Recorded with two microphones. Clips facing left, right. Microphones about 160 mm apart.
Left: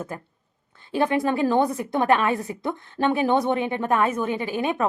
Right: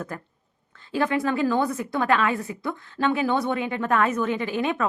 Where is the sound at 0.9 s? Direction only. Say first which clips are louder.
Left 2 dB; 20° left (ahead or behind).